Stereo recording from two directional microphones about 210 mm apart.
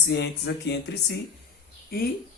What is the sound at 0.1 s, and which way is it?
Speech, 55° left (ahead or behind).